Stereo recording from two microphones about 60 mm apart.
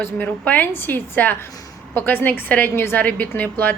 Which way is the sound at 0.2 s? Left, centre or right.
Left.